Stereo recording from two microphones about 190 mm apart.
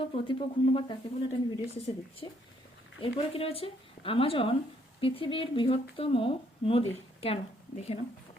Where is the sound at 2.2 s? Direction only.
25° left (ahead or behind).